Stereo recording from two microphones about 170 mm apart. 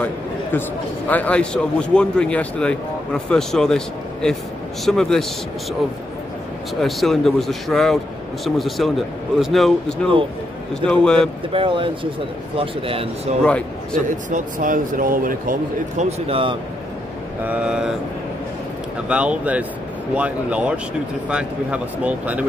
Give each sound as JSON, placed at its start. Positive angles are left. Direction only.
{"t": 0.0, "sound": "a man's voice", "side_deg": 10}
{"t": 6.8, "sound": "a man's voice", "side_deg": 0}
{"t": 11.5, "sound": "speech", "side_deg": -30}
{"t": 14.0, "sound": "a man's voice", "side_deg": -50}
{"t": 16.0, "sound": "speech", "side_deg": -35}
{"t": 17.5, "sound": "a man's voice", "side_deg": -5}
{"t": 19.0, "sound": "speech", "side_deg": -5}